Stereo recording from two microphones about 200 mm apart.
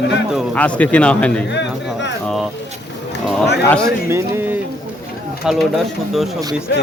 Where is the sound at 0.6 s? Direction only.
5° left (ahead or behind).